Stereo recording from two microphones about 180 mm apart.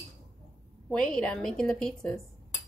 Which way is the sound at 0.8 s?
5° left (ahead or behind).